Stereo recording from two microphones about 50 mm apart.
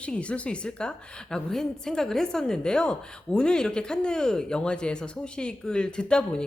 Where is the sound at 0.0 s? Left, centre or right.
Left.